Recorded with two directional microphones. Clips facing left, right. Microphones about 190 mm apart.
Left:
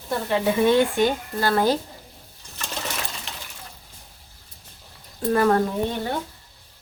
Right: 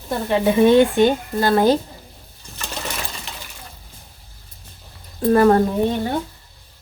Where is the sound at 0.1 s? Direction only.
20° right (ahead or behind).